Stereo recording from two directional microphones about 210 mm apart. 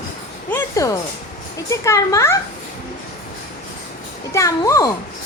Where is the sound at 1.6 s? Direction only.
15° left (ahead or behind).